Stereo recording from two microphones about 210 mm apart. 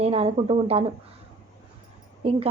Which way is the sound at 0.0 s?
30° right (ahead or behind).